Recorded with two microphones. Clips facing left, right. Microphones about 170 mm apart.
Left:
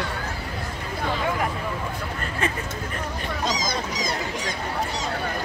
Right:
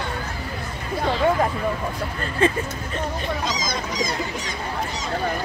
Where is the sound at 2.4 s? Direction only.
30° right (ahead or behind).